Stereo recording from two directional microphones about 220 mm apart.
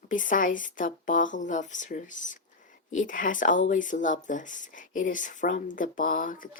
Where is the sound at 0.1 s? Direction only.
35° left (ahead or behind).